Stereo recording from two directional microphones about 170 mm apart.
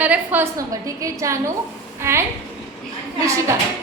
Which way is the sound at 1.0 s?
20° right (ahead or behind).